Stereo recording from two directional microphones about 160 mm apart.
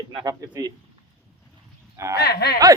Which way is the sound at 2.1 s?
90° left.